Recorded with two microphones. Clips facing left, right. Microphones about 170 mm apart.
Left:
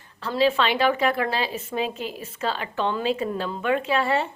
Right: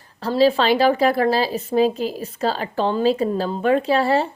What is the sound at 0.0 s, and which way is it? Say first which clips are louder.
A woman's voice: right 5 dB; 35° right (ahead or behind).